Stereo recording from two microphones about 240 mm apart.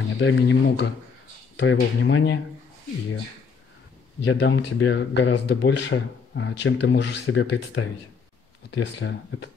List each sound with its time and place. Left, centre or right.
0.2 s speech: left
4.2 s speech: left